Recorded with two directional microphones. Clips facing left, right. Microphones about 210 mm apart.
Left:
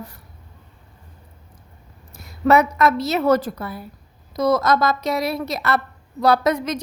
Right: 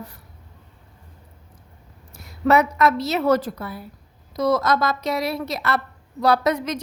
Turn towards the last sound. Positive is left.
turn(degrees=45)  # may be behind; listen again after turning